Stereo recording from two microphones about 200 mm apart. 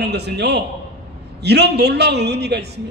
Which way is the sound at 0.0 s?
55° right (ahead or behind).